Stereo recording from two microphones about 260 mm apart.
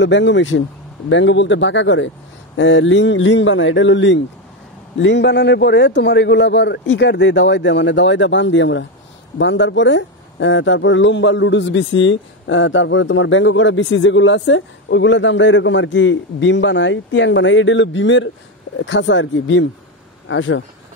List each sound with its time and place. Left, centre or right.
0.0 s a man's voice: left